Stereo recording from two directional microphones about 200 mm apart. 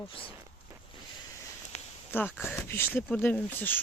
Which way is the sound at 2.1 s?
10° left (ahead or behind).